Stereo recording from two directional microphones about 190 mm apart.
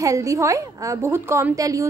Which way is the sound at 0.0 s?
15° right (ahead or behind).